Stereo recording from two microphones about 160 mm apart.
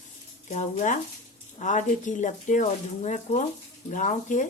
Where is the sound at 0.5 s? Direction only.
45° left (ahead or behind).